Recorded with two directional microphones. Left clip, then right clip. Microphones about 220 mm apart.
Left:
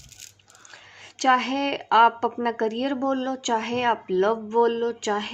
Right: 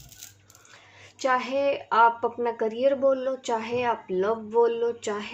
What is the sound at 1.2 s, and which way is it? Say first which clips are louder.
Speech: left 3 dB; 40° left (ahead or behind).